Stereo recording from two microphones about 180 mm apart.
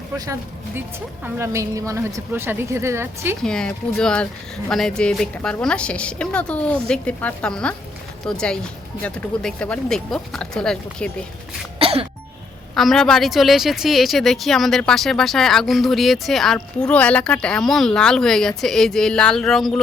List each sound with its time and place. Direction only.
1.2 s speech: 15° right (ahead or behind)
3.4 s speech: 5° left (ahead or behind)
11.8 s throat clearing: 30° right (ahead or behind)
12.7 s speech: centre (ahead or behind)